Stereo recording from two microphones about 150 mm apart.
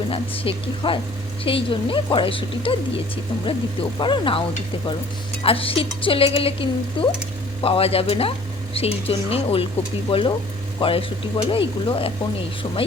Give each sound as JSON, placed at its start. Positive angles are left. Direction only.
{"t": 0.1, "sound": "speech", "side_deg": 40}